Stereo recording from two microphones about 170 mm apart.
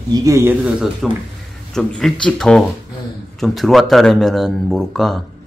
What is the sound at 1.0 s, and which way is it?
Speech, centre (ahead or behind).